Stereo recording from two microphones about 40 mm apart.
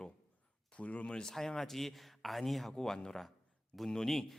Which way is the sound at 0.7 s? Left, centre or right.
Left.